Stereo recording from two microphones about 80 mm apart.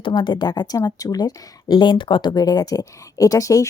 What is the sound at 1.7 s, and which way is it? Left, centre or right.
Speech, left.